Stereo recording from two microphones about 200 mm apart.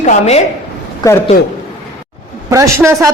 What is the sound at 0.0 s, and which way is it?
Speech, 35° left (ahead or behind).